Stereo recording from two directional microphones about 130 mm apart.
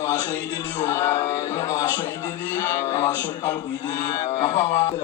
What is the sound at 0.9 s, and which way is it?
A man's voice, 25° left (ahead or behind).